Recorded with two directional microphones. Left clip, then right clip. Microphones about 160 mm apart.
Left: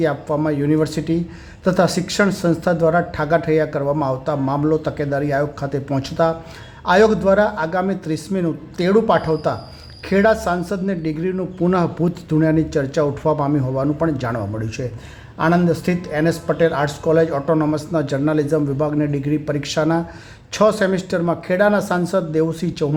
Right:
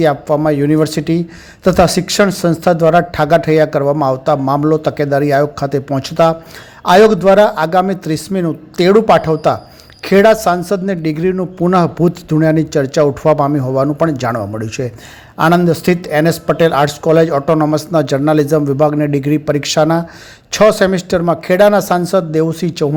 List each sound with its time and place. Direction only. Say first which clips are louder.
0.0 s a man's voice: right 7 dB; 35° right (ahead or behind)